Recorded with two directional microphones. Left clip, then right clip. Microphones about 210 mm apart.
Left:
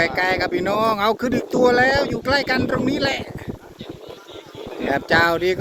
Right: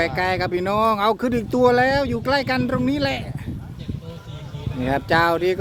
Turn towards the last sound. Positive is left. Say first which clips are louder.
# left 1 dB
turn(degrees=-5)  # may be behind; listen again after turning